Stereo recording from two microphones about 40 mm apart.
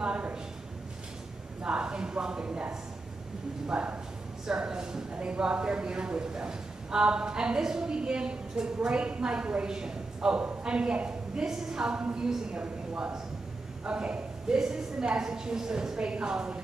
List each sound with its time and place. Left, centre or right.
1.6 s a woman's voice: right
12.6 s a woman's voice: right
14.5 s a woman's voice: centre